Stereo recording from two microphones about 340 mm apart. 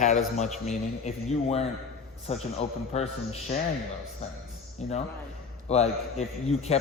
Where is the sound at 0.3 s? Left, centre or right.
Left.